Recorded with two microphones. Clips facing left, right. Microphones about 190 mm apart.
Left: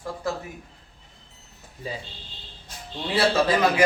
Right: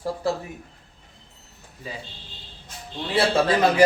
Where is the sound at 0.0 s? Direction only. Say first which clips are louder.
Right 4 dB; 30° right (ahead or behind).